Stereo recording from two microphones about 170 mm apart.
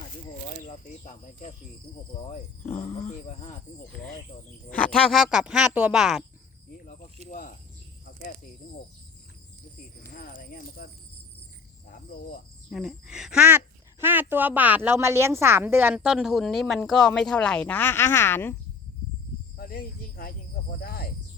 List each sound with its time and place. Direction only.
0.6 s speech: 45° left (ahead or behind)
3.1 s speech: 45° left (ahead or behind)
4.7 s a woman's voice: 5° left (ahead or behind)
6.7 s speech: 45° left (ahead or behind)
10.1 s speech: 55° left (ahead or behind)
12.7 s a woman's voice: 5° right (ahead or behind); by 18.5 s 10° left (ahead or behind)
19.5 s cricket: 60° left (ahead or behind)
20.8 s speech: 60° left (ahead or behind)